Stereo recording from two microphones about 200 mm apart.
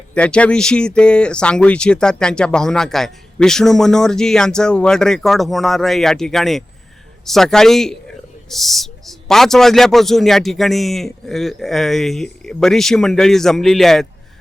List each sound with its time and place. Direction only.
0.1 s speech: 5° left (ahead or behind)